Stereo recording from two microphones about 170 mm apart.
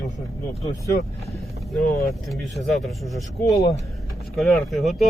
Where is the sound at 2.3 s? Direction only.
Centre (ahead or behind).